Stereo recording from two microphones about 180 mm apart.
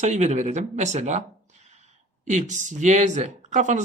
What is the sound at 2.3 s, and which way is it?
Speech, 40° right (ahead or behind).